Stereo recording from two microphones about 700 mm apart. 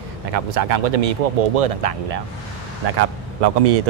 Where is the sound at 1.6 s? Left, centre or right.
Right.